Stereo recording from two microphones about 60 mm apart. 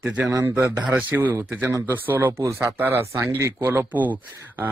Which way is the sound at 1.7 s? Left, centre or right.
Right.